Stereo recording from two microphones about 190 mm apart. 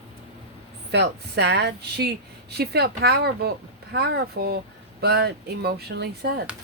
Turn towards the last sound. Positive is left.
turn(degrees=-55)  # may be behind; listen again after turning